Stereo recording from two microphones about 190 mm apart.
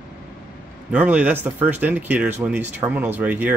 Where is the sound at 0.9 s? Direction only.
5° right (ahead or behind).